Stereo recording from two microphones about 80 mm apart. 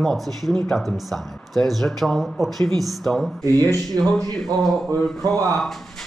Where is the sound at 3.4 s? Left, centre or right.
Right.